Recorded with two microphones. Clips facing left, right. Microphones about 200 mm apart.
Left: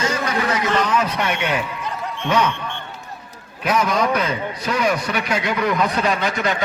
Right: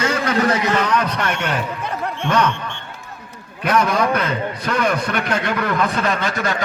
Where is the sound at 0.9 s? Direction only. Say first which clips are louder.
Even; 10° left (ahead or behind).